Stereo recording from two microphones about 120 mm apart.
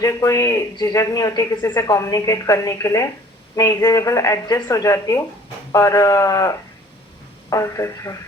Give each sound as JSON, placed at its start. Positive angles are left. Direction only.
{"t": 0.0, "sound": "speech", "side_deg": 30}